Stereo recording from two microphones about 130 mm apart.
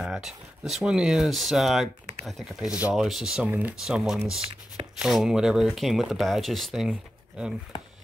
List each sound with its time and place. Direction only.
0.0 s speech: 5° right (ahead or behind)